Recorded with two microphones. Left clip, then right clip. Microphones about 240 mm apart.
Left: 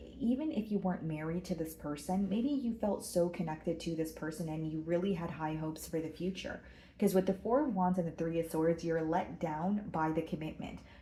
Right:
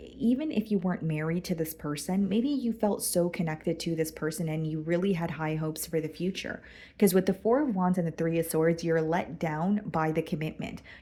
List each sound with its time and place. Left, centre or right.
0.2 s speech: right